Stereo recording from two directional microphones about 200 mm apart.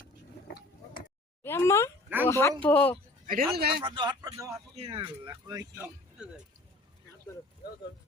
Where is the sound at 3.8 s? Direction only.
25° right (ahead or behind).